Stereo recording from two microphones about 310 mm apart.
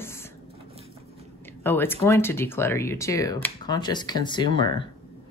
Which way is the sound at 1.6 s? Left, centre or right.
Centre.